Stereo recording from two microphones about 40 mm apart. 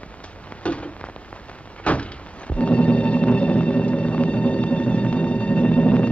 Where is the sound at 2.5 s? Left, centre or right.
Left.